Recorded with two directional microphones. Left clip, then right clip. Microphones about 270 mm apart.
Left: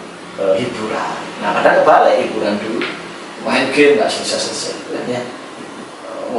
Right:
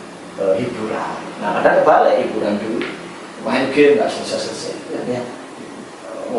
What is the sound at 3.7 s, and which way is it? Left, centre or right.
Speech, centre.